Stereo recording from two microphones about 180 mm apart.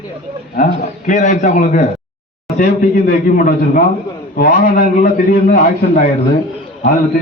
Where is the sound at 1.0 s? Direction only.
45° left (ahead or behind).